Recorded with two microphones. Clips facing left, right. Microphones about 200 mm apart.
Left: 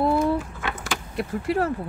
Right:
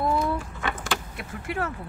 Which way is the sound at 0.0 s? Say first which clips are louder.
Left 4 dB; 35° left (ahead or behind).